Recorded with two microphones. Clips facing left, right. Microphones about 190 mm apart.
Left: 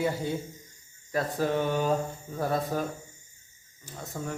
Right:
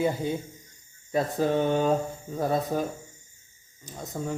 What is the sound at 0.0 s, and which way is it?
Speech, 20° right (ahead or behind).